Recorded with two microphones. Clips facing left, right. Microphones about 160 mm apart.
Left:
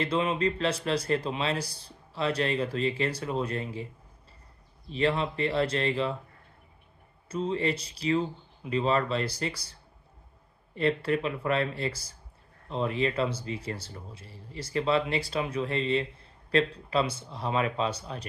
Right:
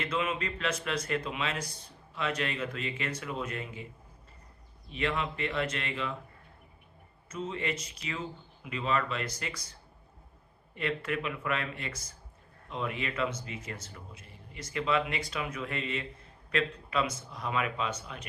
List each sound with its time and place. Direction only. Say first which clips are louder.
0.0 s speech: left 6 dB; 30° left (ahead or behind)
4.9 s speech: left 5 dB; 35° left (ahead or behind)
7.3 s speech: left 6 dB; 30° left (ahead or behind)
10.8 s speech: left 6 dB; 35° left (ahead or behind)